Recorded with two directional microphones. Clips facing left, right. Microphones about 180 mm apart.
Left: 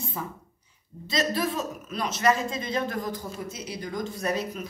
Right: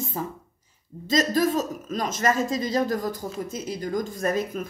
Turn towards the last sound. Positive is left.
turn(degrees=-50)  # may be behind; listen again after turning